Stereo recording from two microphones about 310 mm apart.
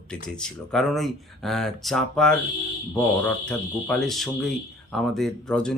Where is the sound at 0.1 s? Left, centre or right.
Centre.